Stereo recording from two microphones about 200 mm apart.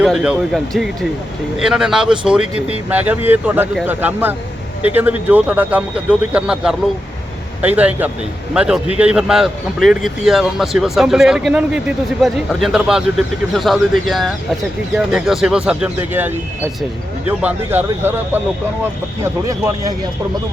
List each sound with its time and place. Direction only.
0.0 s speech: 5° right (ahead or behind)
19.5 s speech: 15° right (ahead or behind)